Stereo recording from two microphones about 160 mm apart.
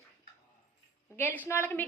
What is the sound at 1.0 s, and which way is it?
Speech, 15° left (ahead or behind).